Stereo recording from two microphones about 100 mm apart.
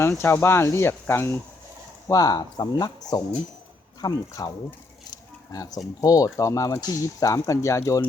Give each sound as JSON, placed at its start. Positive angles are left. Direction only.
{"t": 0.0, "sound": "speech", "side_deg": 25}
{"t": 2.0, "sound": "speech", "side_deg": 40}
{"t": 5.0, "sound": "a sound", "side_deg": 40}
{"t": 6.0, "sound": "speech", "side_deg": 35}